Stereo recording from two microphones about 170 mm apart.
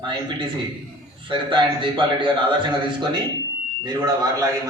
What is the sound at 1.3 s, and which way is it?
A man's voice, 30° right (ahead or behind).